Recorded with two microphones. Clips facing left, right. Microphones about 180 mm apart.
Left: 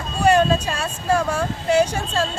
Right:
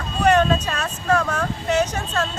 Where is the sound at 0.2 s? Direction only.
10° left (ahead or behind).